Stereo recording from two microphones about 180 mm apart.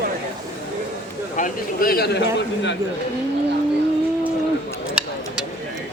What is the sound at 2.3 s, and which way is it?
Speech, 80° left.